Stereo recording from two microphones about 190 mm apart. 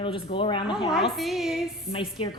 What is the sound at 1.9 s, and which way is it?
Speech, 30° left (ahead or behind).